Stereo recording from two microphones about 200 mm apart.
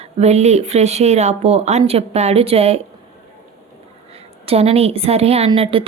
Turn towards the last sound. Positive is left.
turn(degrees=-25)  # may be behind; listen again after turning